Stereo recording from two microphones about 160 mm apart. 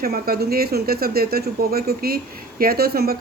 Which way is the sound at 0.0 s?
70° right (ahead or behind).